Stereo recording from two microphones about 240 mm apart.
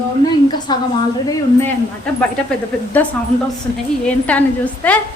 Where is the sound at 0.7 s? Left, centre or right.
Centre.